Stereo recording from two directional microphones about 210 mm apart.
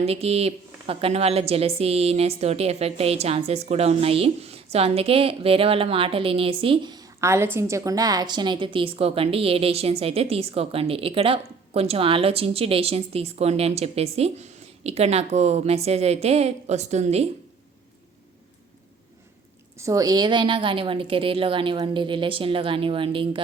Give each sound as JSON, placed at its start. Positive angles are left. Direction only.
{"t": 0.0, "sound": "a woman's voice", "side_deg": -30}
{"t": 19.8, "sound": "a woman's voice", "side_deg": -15}